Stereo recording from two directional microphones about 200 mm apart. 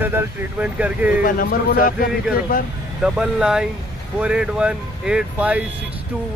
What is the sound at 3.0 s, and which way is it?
Speech, 5° right (ahead or behind).